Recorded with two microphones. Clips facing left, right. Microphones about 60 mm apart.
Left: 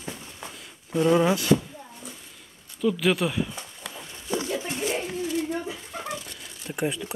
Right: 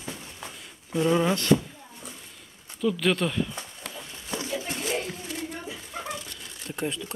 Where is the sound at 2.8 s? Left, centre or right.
Centre.